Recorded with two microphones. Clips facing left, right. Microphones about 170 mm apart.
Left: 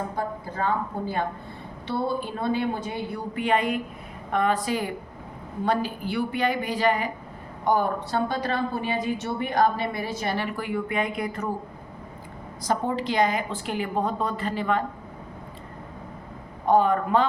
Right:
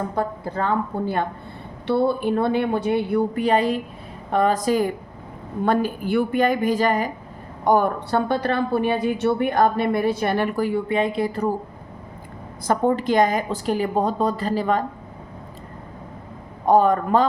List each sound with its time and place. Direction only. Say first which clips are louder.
0.2 s a woman's voice: right 5 dB; 65° right (ahead or behind)
3.3 s a woman's voice: right 4 dB; 35° right (ahead or behind)
12.6 s a woman's voice: right 6 dB; 50° right (ahead or behind)
16.6 s a woman's voice: right 4 dB; 40° right (ahead or behind)